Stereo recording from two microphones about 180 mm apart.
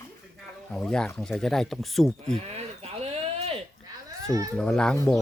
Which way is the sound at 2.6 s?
35° right (ahead or behind).